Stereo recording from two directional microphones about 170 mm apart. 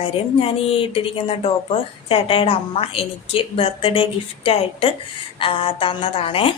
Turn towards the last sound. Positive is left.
turn(degrees=35)  # may be behind; listen again after turning